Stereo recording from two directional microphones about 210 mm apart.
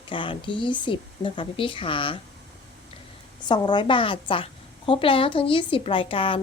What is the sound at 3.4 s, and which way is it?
A woman's voice, 20° left (ahead or behind).